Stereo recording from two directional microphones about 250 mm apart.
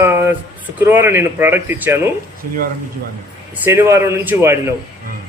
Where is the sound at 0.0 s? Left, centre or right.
Centre.